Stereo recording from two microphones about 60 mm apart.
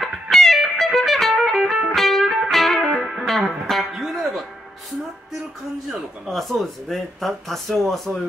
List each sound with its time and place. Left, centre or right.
0.0 s music: centre
3.0 s music: centre
3.3 s music: centre
6.2 s speech: centre